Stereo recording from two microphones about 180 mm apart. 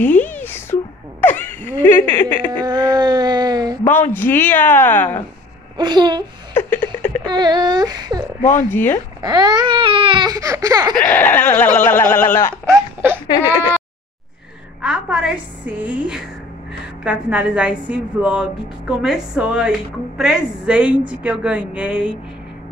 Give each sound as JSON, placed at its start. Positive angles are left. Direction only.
{"t": 0.0, "sound": "a sound", "side_deg": 10}
{"t": 1.2, "sound": "speech", "side_deg": 10}
{"t": 2.6, "sound": "a sound", "side_deg": -25}
{"t": 3.8, "sound": "speech", "side_deg": 10}
{"t": 5.8, "sound": "baby cry", "side_deg": -25}
{"t": 6.5, "sound": "a sound", "side_deg": 10}
{"t": 7.2, "sound": "baby cry", "side_deg": -25}
{"t": 8.4, "sound": "speech", "side_deg": 45}
{"t": 8.7, "sound": "speech", "side_deg": 10}
{"t": 9.2, "sound": "baby cry", "side_deg": -20}
{"t": 11.0, "sound": "speech", "side_deg": 10}
{"t": 14.8, "sound": "a woman's voice", "side_deg": -5}